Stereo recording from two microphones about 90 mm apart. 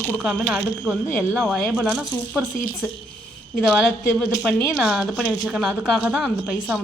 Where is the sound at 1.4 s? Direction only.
Centre (ahead or behind).